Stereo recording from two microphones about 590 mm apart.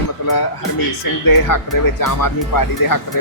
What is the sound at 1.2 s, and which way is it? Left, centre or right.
Speech, left.